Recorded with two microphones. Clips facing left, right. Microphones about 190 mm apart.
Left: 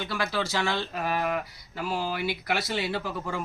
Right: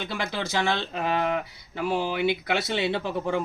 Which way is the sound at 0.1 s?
20° right (ahead or behind).